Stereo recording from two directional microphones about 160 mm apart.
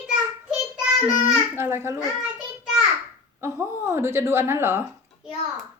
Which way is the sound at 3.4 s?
15° right (ahead or behind).